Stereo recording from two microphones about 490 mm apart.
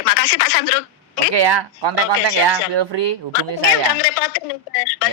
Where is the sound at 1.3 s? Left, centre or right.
Right.